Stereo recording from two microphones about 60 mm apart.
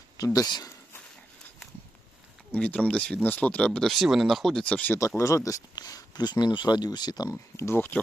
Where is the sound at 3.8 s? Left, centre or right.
Centre.